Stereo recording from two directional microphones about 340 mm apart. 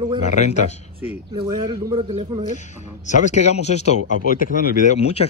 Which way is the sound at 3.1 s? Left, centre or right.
Centre.